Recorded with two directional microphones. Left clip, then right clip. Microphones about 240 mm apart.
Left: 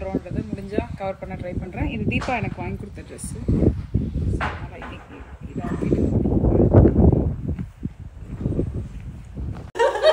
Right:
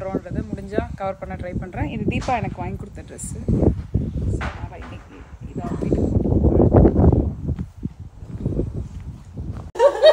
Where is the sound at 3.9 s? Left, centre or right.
Centre.